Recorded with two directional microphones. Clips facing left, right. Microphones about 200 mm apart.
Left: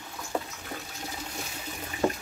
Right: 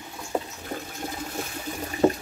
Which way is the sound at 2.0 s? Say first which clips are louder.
Right 6 dB; 40° right (ahead or behind).